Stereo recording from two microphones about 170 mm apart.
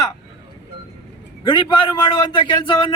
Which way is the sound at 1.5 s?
30° left (ahead or behind).